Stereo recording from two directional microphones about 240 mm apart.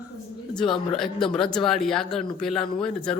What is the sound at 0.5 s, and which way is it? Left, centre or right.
Speech, centre.